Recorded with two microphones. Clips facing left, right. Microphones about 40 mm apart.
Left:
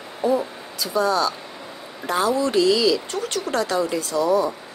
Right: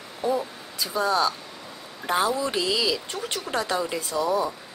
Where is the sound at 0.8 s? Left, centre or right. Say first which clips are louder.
Left 3 dB; centre.